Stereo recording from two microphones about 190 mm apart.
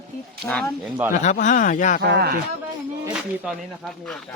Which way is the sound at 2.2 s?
55° right (ahead or behind).